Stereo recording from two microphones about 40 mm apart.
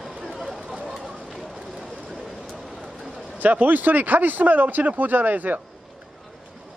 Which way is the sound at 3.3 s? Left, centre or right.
Right.